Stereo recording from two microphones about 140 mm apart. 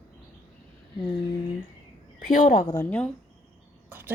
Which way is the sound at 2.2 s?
65° left (ahead or behind).